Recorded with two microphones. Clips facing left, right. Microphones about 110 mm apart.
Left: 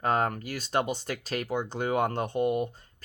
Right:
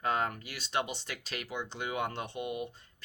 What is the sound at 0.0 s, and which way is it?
Speech, 45° left (ahead or behind).